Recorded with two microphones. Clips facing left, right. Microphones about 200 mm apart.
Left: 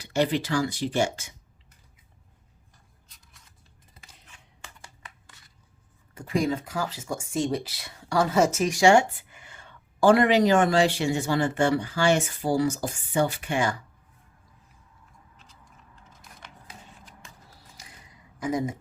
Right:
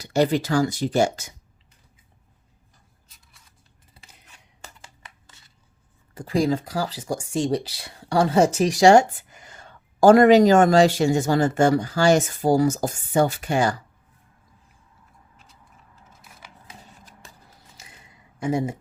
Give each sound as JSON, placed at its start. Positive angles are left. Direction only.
{"t": 0.0, "sound": "speech", "side_deg": -40}
{"t": 3.9, "sound": "scissors", "side_deg": -40}
{"t": 6.1, "sound": "speech", "side_deg": -35}
{"t": 16.0, "sound": "computer keyboard", "side_deg": -5}
{"t": 16.6, "sound": "a sound", "side_deg": -40}
{"t": 18.3, "sound": "speech", "side_deg": -30}